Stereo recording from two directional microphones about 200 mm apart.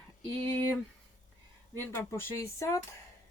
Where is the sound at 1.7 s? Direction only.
10° left (ahead or behind).